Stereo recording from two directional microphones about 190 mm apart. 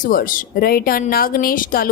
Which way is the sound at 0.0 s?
50° left (ahead or behind).